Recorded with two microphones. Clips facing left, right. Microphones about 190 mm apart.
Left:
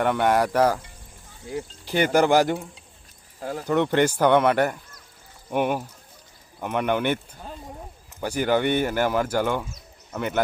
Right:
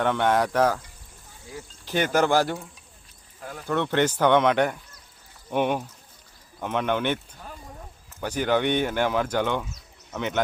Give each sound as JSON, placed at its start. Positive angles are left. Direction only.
{"t": 0.0, "sound": "speech", "side_deg": 10}
{"t": 1.8, "sound": "speech", "side_deg": 10}
{"t": 3.4, "sound": "speech", "side_deg": 30}
{"t": 3.7, "sound": "speech", "side_deg": 15}
{"t": 8.2, "sound": "speech", "side_deg": 10}